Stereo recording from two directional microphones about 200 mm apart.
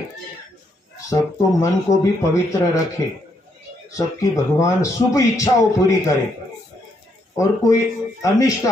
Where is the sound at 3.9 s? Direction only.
15° left (ahead or behind).